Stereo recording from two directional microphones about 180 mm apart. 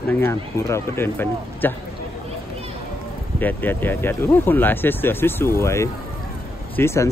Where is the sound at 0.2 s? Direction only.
15° left (ahead or behind).